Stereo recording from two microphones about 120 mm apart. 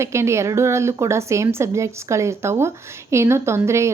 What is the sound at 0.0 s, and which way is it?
A woman's voice, 25° right (ahead or behind).